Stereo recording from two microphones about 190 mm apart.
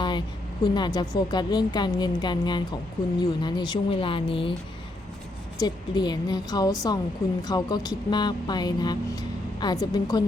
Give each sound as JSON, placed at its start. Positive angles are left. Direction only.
{"t": 0.6, "sound": "speech", "side_deg": 20}
{"t": 5.5, "sound": "speech", "side_deg": 20}